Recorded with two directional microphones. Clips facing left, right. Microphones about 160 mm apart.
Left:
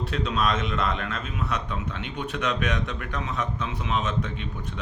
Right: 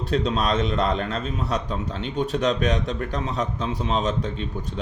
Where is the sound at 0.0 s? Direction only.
35° right (ahead or behind).